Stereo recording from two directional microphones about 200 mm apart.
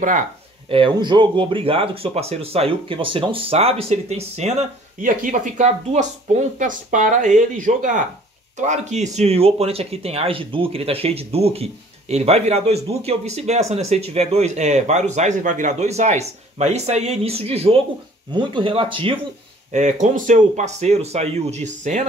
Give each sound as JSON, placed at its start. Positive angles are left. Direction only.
{"t": 0.7, "sound": "speech", "side_deg": -25}
{"t": 19.7, "sound": "speech", "side_deg": -35}